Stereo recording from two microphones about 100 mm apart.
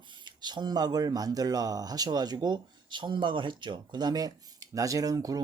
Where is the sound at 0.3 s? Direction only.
45° right (ahead or behind).